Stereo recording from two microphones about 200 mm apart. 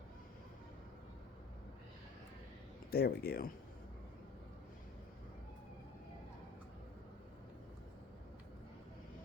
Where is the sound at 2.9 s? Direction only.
50° left (ahead or behind).